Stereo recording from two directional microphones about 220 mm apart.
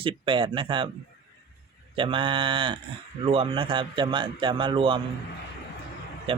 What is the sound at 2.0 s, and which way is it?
Speech, 25° right (ahead or behind).